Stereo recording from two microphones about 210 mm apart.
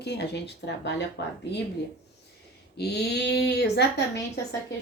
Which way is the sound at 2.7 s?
50° left (ahead or behind).